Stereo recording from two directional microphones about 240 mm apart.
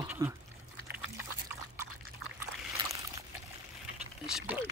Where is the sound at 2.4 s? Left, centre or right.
Centre.